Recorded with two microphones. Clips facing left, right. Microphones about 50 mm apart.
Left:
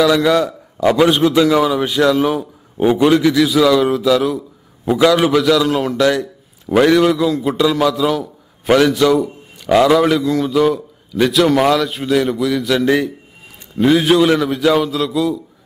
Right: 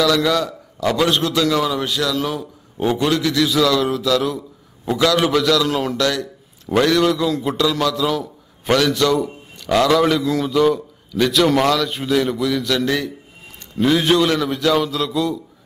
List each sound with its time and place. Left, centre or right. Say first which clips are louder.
0.0 s a man's voice: left 4 dB; centre
2.0 s a man's voice: left 7 dB; left; by 5.9 s centre
5.9 s a man's voice: left 5 dB; centre
12.7 s a man's voice: left 5 dB; centre
13.7 s a man's voice: left 4 dB; centre